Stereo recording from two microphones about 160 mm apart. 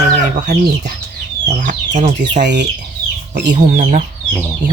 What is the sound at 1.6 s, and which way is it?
Speech, 55° right (ahead or behind).